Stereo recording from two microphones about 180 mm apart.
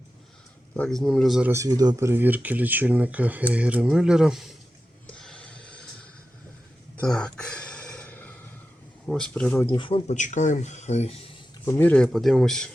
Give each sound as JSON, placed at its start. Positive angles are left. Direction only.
{"t": 0.8, "sound": "speech", "side_deg": 0}
{"t": 1.5, "sound": "speech", "side_deg": -20}
{"t": 5.0, "sound": "a sound", "side_deg": 5}
{"t": 6.9, "sound": "a sound", "side_deg": 5}
{"t": 9.0, "sound": "speech", "side_deg": 5}
{"t": 9.7, "sound": "speech", "side_deg": 30}
{"t": 11.6, "sound": "speech", "side_deg": 15}